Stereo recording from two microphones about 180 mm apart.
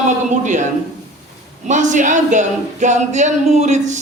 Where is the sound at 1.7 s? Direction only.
45° right (ahead or behind).